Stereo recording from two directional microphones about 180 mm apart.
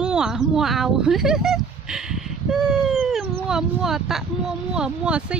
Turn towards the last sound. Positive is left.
turn(degrees=-5)  # may be behind; listen again after turning